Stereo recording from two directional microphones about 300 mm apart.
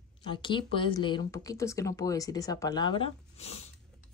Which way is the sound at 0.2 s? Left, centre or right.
Centre.